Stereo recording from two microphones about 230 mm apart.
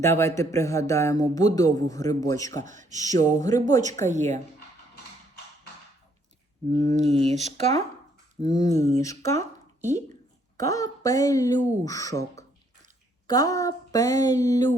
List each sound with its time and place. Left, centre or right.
0.0 s speech: centre
2.6 s speech: right
2.9 s speech: centre
4.1 s speech: right
6.7 s speech: right
8.4 s speech: centre
10.6 s speech: centre
13.2 s speech: centre